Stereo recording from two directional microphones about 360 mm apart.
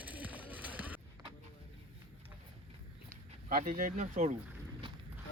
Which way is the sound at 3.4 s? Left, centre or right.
Right.